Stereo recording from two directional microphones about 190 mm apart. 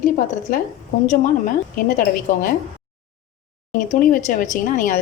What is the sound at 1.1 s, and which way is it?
Speech, 45° left (ahead or behind).